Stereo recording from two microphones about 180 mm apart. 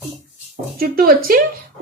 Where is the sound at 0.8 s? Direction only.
55° right (ahead or behind).